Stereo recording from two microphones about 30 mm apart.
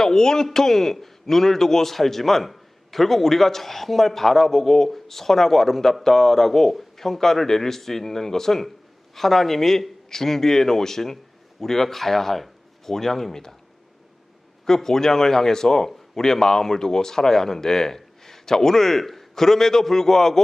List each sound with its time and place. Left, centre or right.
0.0 s a man's voice: centre
14.6 s a man's voice: centre